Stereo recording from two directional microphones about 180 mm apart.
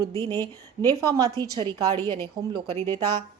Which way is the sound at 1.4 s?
25° right (ahead or behind).